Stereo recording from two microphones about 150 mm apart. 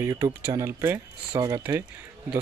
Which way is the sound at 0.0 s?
20° right (ahead or behind).